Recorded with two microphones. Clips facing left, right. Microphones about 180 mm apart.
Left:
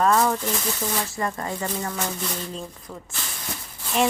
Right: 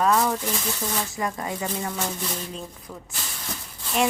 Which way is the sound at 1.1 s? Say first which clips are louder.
Left 1 dB; 15° right (ahead or behind).